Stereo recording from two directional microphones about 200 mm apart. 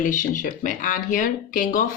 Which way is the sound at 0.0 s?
40° left (ahead or behind).